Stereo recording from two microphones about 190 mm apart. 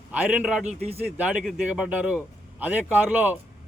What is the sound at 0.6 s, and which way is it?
Speech, 35° right (ahead or behind).